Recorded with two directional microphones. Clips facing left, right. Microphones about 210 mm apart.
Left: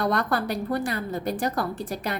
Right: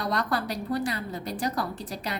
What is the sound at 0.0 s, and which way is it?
A woman's voice, 55° left (ahead or behind).